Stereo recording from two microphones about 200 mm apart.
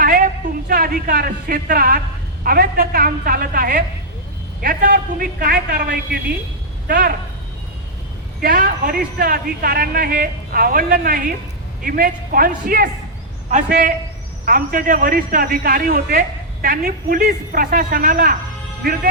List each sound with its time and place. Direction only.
0.0 s a sound: 45° right (ahead or behind)
0.7 s a man's voice: 45° right (ahead or behind)
8.4 s a man's voice: 45° right (ahead or behind)